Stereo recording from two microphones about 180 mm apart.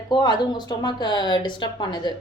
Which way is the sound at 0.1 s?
25° left (ahead or behind).